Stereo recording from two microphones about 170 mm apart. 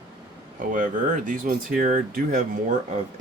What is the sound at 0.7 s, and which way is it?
Speech, 55° right (ahead or behind).